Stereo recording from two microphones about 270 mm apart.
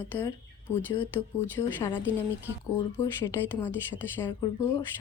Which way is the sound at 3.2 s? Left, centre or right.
Centre.